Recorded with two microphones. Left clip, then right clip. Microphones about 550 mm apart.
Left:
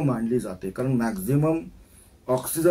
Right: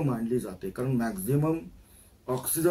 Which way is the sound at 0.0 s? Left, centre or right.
Right.